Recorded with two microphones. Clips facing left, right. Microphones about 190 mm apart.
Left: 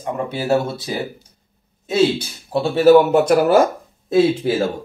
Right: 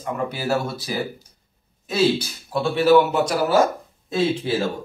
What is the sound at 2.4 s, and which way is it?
Speech, 30° left (ahead or behind).